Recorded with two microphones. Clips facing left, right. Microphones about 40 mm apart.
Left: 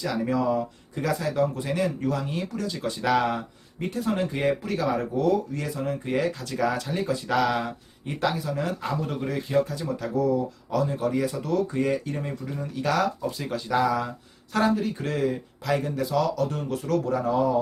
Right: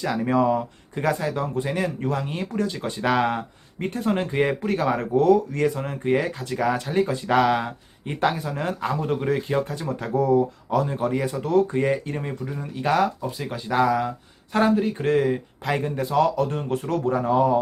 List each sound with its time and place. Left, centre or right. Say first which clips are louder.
0.0 s speech: right 4 dB; right
5.8 s speech: right 3 dB; right
12.5 s speech: right 3 dB; centre